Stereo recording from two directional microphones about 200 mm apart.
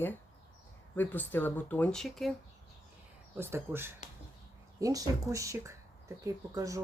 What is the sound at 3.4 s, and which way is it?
Speech, 10° right (ahead or behind).